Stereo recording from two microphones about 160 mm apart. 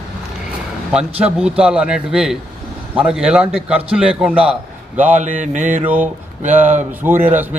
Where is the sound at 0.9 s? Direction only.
5° right (ahead or behind).